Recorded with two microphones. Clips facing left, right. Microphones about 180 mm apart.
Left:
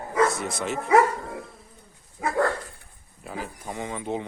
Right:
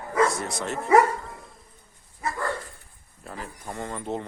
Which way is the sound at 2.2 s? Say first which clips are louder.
Left 6 dB; 80° left.